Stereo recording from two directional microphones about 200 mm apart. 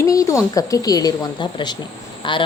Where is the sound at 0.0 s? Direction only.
15° left (ahead or behind).